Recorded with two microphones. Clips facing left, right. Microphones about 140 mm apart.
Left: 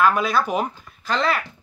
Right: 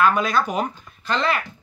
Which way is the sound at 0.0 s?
5° left (ahead or behind).